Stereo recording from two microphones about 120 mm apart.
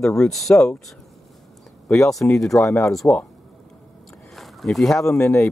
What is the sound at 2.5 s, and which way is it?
Speech, 20° left (ahead or behind).